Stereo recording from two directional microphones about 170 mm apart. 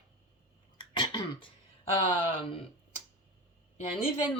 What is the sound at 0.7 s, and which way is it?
Cough, 30° left (ahead or behind).